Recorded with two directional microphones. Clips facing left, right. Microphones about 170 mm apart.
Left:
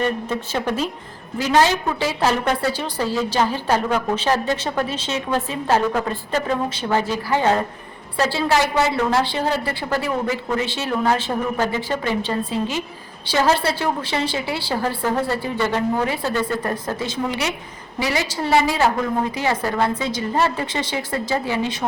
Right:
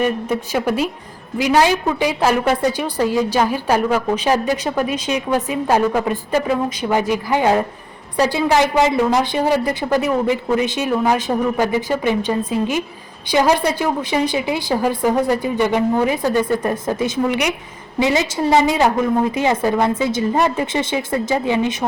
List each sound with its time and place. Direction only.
0.0 s a woman's voice: 10° right (ahead or behind)